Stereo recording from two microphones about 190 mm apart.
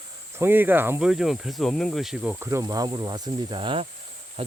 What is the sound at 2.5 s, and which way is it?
Speech, 20° right (ahead or behind).